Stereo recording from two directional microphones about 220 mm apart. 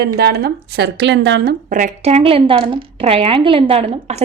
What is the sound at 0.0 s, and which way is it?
A woman's voice, 45° right (ahead or behind).